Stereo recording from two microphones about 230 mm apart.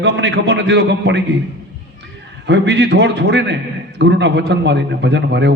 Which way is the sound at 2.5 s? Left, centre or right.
Right.